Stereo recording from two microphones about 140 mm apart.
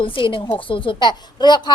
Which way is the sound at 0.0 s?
40° left (ahead or behind).